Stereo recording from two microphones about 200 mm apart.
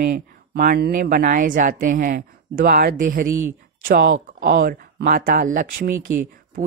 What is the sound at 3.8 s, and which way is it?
Speech, 60° right (ahead or behind).